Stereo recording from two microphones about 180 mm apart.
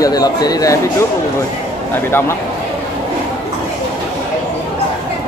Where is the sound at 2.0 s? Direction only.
15° left (ahead or behind).